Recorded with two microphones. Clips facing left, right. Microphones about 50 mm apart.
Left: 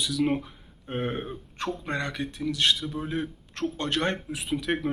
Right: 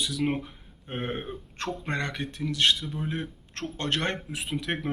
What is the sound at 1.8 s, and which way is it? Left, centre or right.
Speech, right.